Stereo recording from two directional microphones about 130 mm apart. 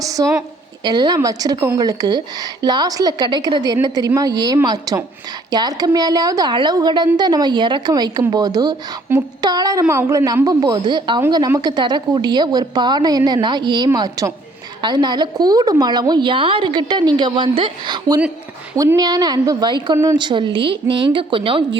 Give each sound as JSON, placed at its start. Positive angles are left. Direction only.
{"t": 0.0, "sound": "a woman's voice", "side_deg": -25}